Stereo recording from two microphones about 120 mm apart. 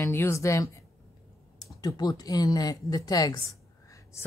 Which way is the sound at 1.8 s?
35° left (ahead or behind).